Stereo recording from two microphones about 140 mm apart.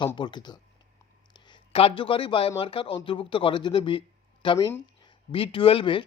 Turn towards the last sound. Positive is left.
turn(degrees=40)  # may be behind; listen again after turning